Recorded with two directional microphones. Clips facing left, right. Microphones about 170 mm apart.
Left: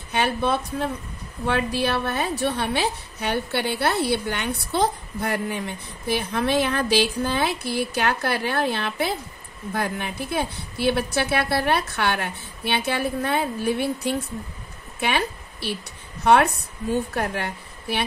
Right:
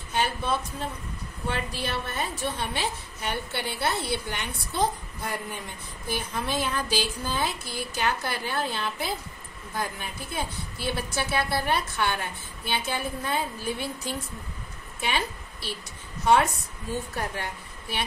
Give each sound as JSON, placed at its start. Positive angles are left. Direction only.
{"t": 0.1, "sound": "a woman's voice", "side_deg": 65}
{"t": 15.0, "sound": "a sound", "side_deg": 65}
{"t": 16.3, "sound": "speech", "side_deg": 65}